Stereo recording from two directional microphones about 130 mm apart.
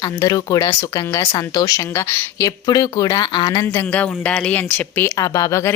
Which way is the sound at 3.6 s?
20° left (ahead or behind).